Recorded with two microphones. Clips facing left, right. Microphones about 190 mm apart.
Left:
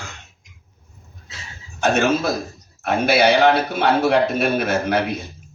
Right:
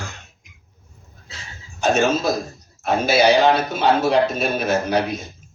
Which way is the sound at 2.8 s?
60° left (ahead or behind).